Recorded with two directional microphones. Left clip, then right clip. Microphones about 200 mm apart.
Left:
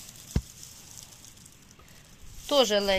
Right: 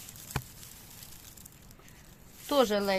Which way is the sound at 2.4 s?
5° right (ahead or behind).